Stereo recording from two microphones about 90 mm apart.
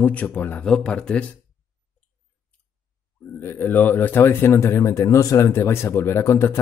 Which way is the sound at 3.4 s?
25° left (ahead or behind).